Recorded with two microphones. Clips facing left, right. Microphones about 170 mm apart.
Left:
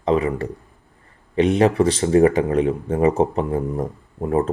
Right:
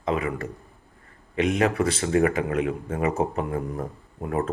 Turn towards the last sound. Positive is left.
turn(degrees=30)  # may be behind; listen again after turning